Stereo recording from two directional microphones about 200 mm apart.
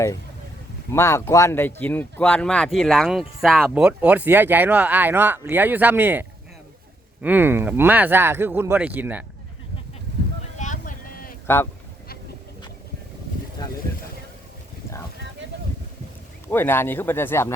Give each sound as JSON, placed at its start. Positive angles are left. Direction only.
{"t": 0.9, "sound": "speech", "side_deg": 15}
{"t": 10.6, "sound": "a sound", "side_deg": 40}
{"t": 11.4, "sound": "speech", "side_deg": 10}
{"t": 16.5, "sound": "speech", "side_deg": 10}